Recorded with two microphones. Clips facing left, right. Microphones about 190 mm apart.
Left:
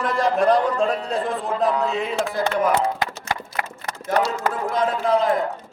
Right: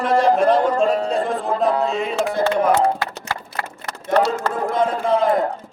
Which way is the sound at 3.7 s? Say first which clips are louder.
Right 6 dB; 65° right (ahead or behind).